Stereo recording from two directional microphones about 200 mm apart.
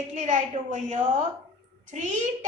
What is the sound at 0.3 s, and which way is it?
Speech, 35° right (ahead or behind).